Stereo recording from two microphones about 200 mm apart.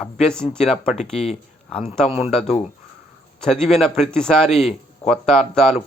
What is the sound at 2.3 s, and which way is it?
A man's voice, 5° left (ahead or behind).